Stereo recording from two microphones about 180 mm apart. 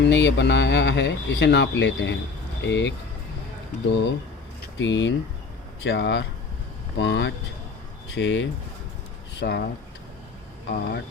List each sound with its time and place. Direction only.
0.0 s speech: 75° left (ahead or behind)
4.6 s speech: 90° left
5.8 s speech: 80° left
9.4 s speech: 70° left (ahead or behind)
10.7 s speech: 70° left (ahead or behind)